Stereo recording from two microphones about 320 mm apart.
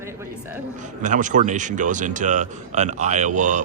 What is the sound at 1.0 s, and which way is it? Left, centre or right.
Speech, right.